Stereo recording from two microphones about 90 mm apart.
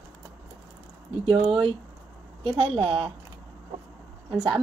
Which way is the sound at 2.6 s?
75° right (ahead or behind).